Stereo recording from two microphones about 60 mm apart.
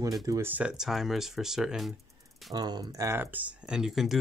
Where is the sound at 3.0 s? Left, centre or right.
Right.